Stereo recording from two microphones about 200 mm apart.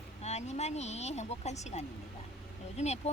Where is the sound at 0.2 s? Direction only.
35° left (ahead or behind).